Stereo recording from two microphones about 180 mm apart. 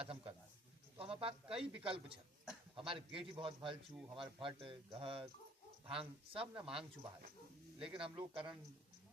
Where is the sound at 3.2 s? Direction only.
30° right (ahead or behind).